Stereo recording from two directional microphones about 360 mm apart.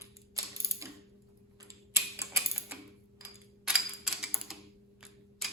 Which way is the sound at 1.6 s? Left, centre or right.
Centre.